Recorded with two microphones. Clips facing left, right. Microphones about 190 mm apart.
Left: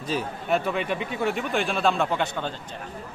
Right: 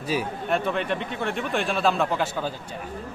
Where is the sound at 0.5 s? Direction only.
Centre (ahead or behind).